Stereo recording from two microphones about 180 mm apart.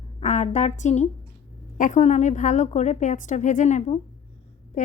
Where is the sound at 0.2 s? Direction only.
40° left (ahead or behind).